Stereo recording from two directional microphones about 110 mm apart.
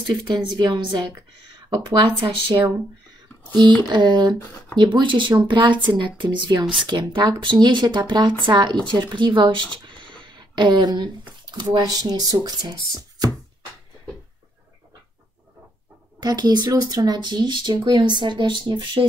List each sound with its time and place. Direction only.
0.0 s speech: 45° right (ahead or behind)
9.8 s a sound: 45° right (ahead or behind)
11.5 s speech: 40° right (ahead or behind)
16.2 s speech: 35° right (ahead or behind)